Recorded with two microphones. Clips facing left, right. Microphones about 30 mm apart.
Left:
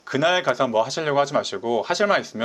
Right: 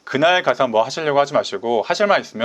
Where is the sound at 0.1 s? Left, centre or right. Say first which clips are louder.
Right 4 dB; centre.